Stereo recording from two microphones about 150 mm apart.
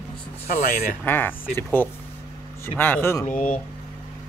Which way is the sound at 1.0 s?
15° left (ahead or behind).